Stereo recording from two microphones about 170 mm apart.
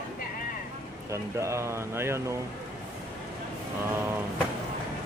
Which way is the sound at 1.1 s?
15° right (ahead or behind).